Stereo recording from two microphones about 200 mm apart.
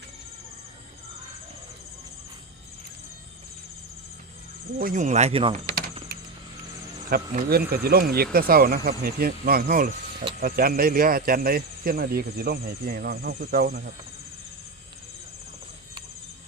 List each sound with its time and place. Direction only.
4.8 s speech: 40° right (ahead or behind)
7.1 s speech: 50° right (ahead or behind)